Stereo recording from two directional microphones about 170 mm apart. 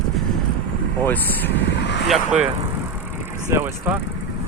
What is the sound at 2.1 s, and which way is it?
Speech, 5° right (ahead or behind).